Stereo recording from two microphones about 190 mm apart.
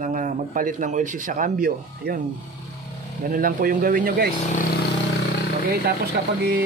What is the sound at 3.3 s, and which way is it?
Speech, 50° right (ahead or behind).